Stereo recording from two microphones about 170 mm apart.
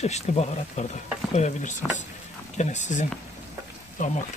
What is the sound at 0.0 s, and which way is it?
Speech, 40° left (ahead or behind).